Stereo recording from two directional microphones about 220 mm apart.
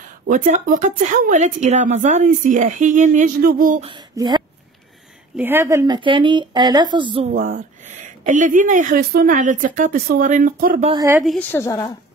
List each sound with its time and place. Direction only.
0.3 s speech: 40° right (ahead or behind)
3.8 s speech: 20° right (ahead or behind); by 10.9 s 40° right (ahead or behind)
10.9 s speech: 15° right (ahead or behind)
11.2 s a woman's voice: 10° left (ahead or behind)